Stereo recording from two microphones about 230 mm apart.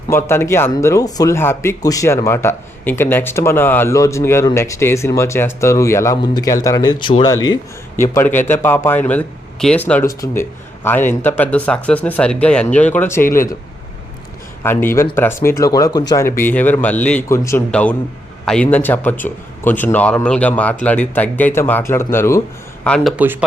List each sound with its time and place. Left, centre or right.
0.1 s speech: centre
13.2 s speech: left
14.6 s a man's voice: centre